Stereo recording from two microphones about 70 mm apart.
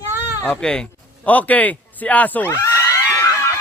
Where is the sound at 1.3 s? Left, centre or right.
Left.